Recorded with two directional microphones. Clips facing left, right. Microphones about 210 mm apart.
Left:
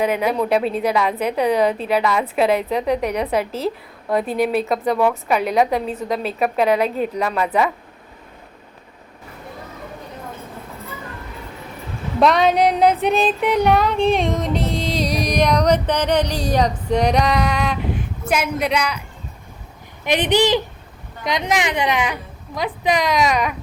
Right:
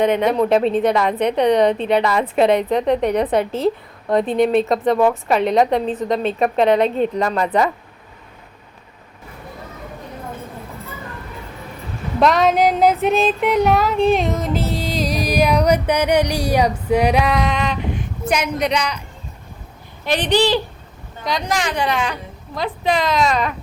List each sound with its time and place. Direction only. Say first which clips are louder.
0.0 s female singing: right 3 dB; 5° left (ahead or behind)
12.2 s female singing: even; centre (ahead or behind)
20.1 s speech: even; 20° left (ahead or behind)
22.0 s a woman's voice: even; 10° left (ahead or behind)